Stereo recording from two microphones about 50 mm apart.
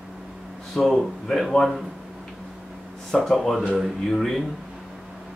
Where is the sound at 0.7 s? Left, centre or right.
Centre.